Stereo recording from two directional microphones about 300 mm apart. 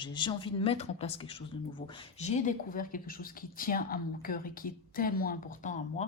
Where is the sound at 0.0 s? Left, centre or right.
Centre.